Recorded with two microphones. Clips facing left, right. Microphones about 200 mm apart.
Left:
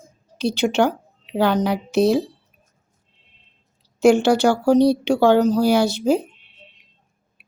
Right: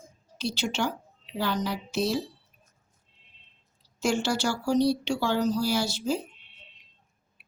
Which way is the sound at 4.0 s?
60° left (ahead or behind).